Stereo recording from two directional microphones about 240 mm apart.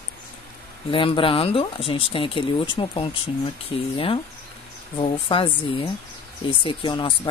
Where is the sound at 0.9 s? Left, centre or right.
Left.